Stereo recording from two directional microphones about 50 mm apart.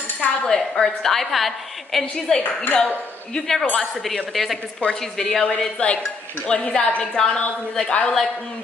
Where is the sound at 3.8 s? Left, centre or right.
Centre.